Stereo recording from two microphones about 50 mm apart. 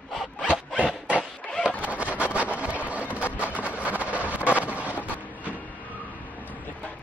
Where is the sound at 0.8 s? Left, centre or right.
Right.